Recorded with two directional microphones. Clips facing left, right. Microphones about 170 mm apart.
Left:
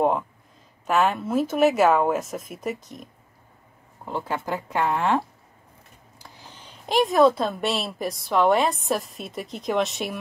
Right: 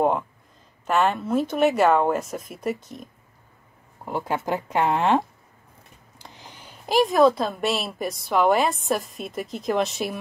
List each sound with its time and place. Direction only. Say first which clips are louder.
0.8 s a woman's voice: even; centre (ahead or behind)
4.0 s speech: right 2 dB; 15° right (ahead or behind)
6.1 s a sound: right 2 dB; 20° right (ahead or behind)
6.9 s a woman's voice: even; centre (ahead or behind)